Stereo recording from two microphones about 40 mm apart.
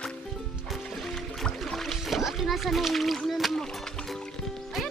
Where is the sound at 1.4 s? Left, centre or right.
Centre.